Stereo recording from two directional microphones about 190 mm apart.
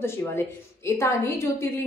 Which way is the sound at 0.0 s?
15° left (ahead or behind).